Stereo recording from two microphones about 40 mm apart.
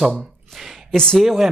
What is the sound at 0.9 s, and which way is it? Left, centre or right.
Speech, centre.